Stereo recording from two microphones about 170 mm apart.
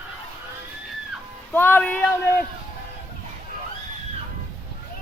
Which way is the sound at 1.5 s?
10° left (ahead or behind).